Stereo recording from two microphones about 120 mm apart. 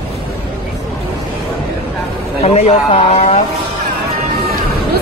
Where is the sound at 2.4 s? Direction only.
60° left (ahead or behind).